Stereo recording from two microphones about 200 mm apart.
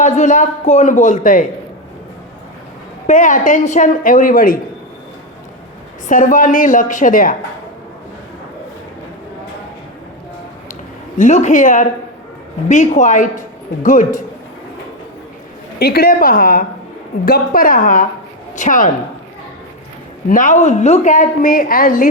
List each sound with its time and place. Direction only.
0.0 s a woman's voice: 40° left (ahead or behind)
3.1 s a woman's voice: 40° left (ahead or behind)
6.1 s a woman's voice: 40° left (ahead or behind)
11.2 s a woman's voice: 35° left (ahead or behind)
15.8 s a woman's voice: 50° left (ahead or behind)
20.2 s a woman's voice: 40° left (ahead or behind)